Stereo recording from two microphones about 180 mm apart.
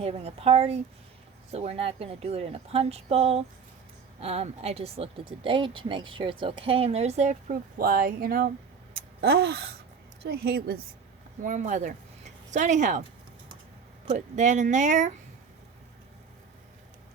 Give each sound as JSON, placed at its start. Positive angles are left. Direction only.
{"t": 0.0, "sound": "a woman's voice", "side_deg": -35}
{"t": 11.4, "sound": "speech", "side_deg": -45}
{"t": 14.1, "sound": "speech", "side_deg": -40}